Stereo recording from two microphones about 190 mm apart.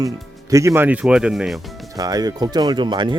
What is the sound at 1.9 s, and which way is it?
Speech, 20° right (ahead or behind).